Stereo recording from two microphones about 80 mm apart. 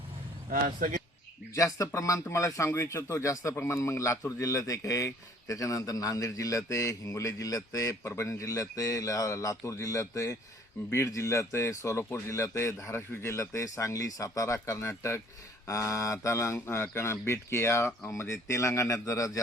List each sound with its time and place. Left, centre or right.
1.5 s a man's voice: left